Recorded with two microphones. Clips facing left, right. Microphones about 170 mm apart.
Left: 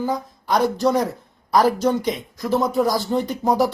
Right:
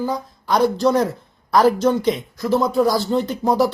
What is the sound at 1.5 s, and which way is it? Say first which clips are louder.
Speech: right 2 dB; 15° left (ahead or behind).